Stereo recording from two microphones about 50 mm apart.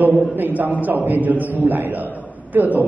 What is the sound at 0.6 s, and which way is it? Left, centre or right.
A man's voice, right.